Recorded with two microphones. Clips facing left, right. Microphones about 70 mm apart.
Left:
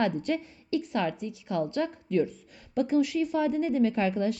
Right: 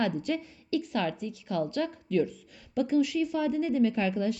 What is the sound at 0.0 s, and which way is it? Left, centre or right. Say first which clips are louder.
Speech: left 2 dB; left.